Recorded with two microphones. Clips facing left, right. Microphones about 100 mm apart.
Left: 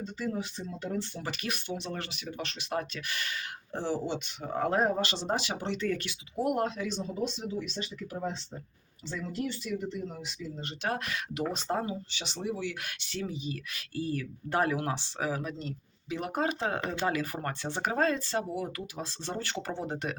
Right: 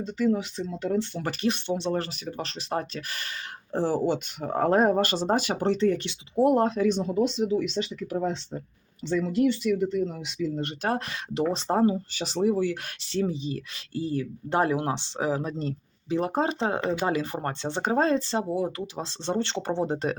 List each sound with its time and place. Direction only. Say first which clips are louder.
0.0 s speech: right 9 dB; 85° right
1.3 s speech: right 10 dB; 30° right (ahead or behind); by 5.7 s 50° right (ahead or behind)
5.7 s speech: right 8 dB; 30° right (ahead or behind)
6.8 s speech: right 9 dB; 60° right (ahead or behind)
10.8 s speech: right 3 dB; 30° right (ahead or behind)